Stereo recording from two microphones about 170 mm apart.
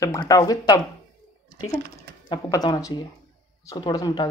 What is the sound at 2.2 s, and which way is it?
Speech, 25° left (ahead or behind).